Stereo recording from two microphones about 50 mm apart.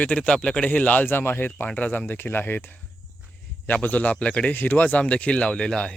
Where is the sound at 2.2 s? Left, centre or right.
Left.